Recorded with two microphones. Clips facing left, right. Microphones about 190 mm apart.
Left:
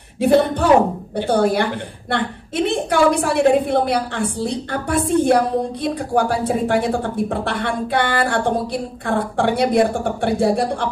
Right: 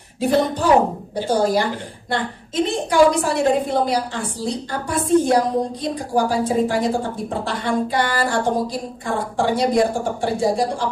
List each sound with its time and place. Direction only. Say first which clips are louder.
0.2 s a woman's voice: left 3 dB; 60° left (ahead or behind)